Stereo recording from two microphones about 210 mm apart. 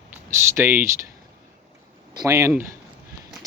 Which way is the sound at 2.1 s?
15° right (ahead or behind).